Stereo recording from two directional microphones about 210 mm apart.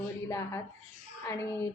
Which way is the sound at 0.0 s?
15° left (ahead or behind).